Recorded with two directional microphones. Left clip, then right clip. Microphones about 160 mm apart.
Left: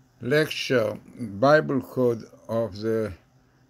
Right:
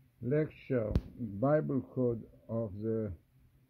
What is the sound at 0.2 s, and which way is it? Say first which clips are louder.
Speech: left 11 dB; 10° left (ahead or behind).